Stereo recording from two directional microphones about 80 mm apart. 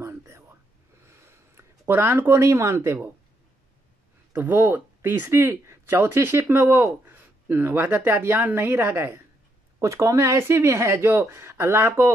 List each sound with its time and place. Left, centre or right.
1.0 s a sound: right
2.4 s speech: right
4.3 s a woman's voice: right